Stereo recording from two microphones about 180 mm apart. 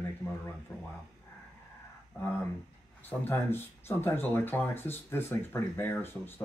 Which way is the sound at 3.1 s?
10° left (ahead or behind).